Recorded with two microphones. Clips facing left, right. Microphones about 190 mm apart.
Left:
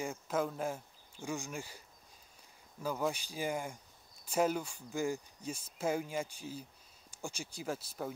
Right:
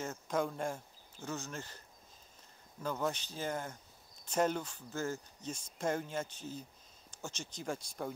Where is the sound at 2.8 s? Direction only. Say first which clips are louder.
Left 1 dB; 10° left (ahead or behind).